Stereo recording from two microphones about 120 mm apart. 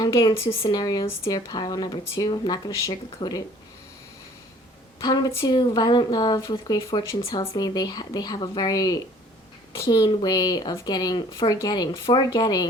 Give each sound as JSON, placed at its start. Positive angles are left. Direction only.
{"t": 0.0, "sound": "speech", "side_deg": 30}
{"t": 1.5, "sound": "speech", "side_deg": 35}
{"t": 4.9, "sound": "speech", "side_deg": 35}